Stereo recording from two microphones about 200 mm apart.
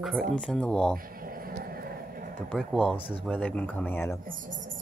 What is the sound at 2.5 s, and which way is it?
Speech, centre (ahead or behind).